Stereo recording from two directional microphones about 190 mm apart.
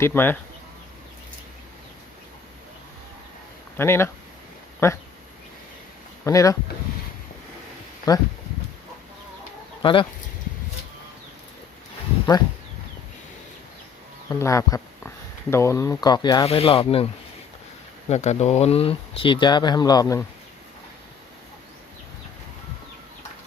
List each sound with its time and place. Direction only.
0.0 s speech: 10° left (ahead or behind)
3.8 s speech: 10° left (ahead or behind)
6.2 s speech: 15° left (ahead or behind)
8.1 s speech: 20° left (ahead or behind)
9.8 s speech: 25° left (ahead or behind)
14.3 s speech: 15° left (ahead or behind); by 17.1 s 30° left (ahead or behind)
18.1 s speech: 35° left (ahead or behind); by 20.2 s 15° left (ahead or behind)